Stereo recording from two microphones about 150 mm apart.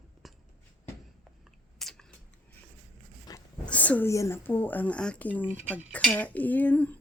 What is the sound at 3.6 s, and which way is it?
Speech, 10° left (ahead or behind).